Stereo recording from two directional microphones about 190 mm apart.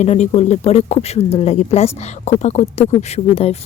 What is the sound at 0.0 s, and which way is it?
A woman's voice, 35° left (ahead or behind).